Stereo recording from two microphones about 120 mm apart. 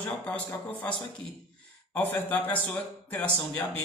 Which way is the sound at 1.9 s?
15° left (ahead or behind).